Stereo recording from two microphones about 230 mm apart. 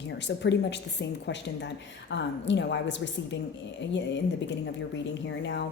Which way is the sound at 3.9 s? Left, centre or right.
Left.